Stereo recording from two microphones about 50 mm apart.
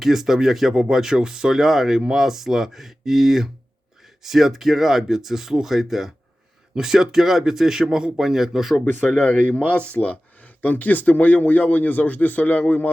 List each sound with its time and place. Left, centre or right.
0.0 s speech: centre
8.8 s speech: left